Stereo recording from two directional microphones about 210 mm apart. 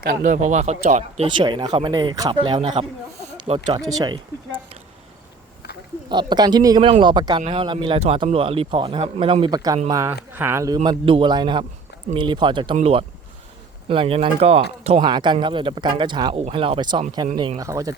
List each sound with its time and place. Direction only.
0.0 s speech: 45° right (ahead or behind); by 4.8 s 25° right (ahead or behind)
6.1 s speech: 20° right (ahead or behind)